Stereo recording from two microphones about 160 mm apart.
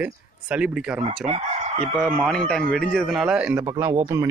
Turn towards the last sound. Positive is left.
turn(degrees=-20)  # may be behind; listen again after turning